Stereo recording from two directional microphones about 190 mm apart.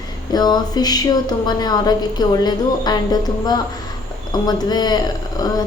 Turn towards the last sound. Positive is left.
turn(degrees=20)  # may be behind; listen again after turning